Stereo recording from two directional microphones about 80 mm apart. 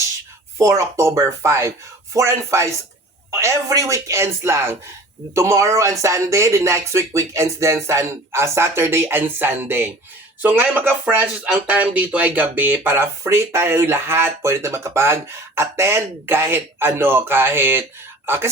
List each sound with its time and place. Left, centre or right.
0.6 s speech: right